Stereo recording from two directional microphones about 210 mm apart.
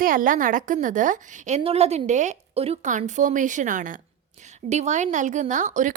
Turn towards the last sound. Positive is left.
turn(degrees=-35)  # may be behind; listen again after turning